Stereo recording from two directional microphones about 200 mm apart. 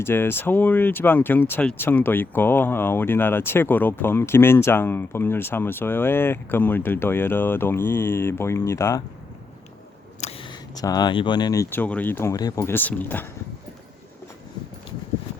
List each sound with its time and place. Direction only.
0.0 s speech: 10° left (ahead or behind)
10.2 s speech: 30° left (ahead or behind); by 13.2 s 10° left (ahead or behind)